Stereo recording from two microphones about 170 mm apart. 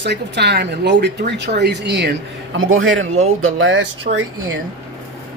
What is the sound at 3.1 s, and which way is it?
Speech, 40° right (ahead or behind).